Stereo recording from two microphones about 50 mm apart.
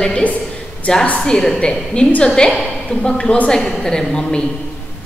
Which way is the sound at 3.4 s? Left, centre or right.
Centre.